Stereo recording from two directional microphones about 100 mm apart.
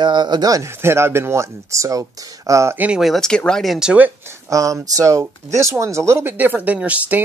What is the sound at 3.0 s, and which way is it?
Speech, 5° left (ahead or behind).